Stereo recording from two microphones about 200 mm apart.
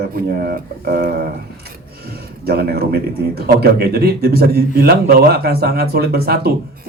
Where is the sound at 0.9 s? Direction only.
45° right (ahead or behind).